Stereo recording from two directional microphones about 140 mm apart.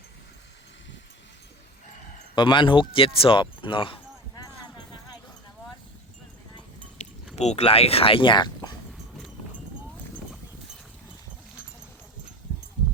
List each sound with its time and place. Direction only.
2.3 s speech: 35° left (ahead or behind)
7.3 s speech: 50° left (ahead or behind); by 8.7 s 35° left (ahead or behind)